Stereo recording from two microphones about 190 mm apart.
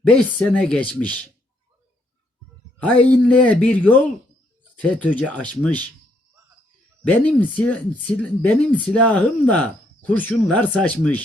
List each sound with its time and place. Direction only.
0.1 s speech: 5° left (ahead or behind)
2.8 s speech: 5° left (ahead or behind)
5.2 s speech: 5° left (ahead or behind)
7.0 s speech: 10° left (ahead or behind)